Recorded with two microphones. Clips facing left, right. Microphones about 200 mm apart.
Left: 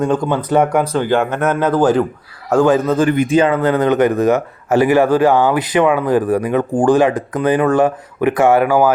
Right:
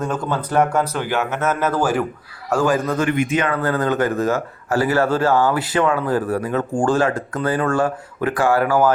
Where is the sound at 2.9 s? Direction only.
35° left (ahead or behind).